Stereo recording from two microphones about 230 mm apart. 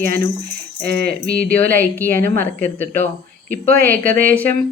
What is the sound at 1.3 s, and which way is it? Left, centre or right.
Speech, centre.